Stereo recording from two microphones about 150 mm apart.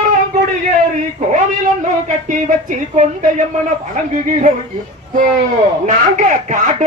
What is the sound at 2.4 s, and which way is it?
A man's voice, 55° right (ahead or behind).